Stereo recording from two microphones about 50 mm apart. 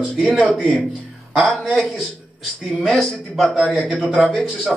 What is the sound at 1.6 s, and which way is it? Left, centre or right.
A man's voice, centre.